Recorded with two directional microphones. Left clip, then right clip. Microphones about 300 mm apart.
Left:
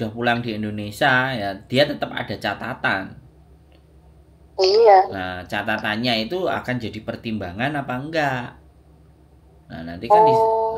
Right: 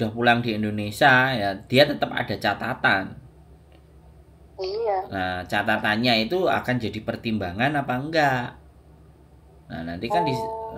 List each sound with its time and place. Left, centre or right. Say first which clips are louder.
0.0 s speech: right 1 dB; centre
4.6 s a woman's voice: left 13 dB; centre
5.1 s speech: right 1 dB; centre
9.7 s speech: left 10 dB; centre
10.3 s a sound: left 12 dB; left